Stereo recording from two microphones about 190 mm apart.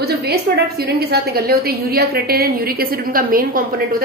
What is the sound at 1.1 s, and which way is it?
A woman's voice, 55° right (ahead or behind).